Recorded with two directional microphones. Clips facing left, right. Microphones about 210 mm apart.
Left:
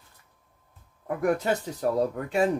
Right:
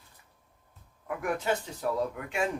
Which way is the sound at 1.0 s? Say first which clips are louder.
Left 5 dB; 40° left (ahead or behind).